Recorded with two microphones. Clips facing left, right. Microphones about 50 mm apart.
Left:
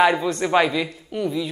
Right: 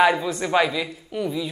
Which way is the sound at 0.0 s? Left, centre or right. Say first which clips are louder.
Left 1 dB; centre.